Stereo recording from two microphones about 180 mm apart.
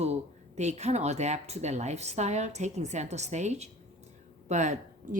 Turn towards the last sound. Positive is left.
turn(degrees=-40)  # may be behind; listen again after turning